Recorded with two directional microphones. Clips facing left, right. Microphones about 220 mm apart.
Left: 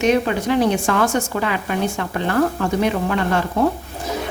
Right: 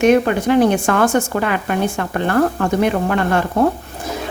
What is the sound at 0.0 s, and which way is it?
Speech, 50° right (ahead or behind).